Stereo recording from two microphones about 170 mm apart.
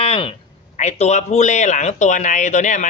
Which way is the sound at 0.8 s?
40° left (ahead or behind).